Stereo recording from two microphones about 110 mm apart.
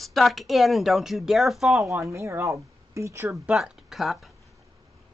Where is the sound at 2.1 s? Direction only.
25° right (ahead or behind).